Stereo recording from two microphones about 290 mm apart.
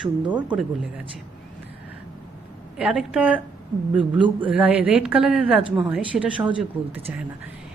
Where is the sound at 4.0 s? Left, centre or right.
Centre.